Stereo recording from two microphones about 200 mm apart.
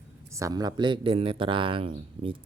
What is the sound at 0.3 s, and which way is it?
Speech, 15° right (ahead or behind).